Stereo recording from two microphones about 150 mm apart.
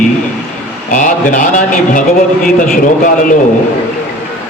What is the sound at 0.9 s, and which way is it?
Speech, 60° left (ahead or behind).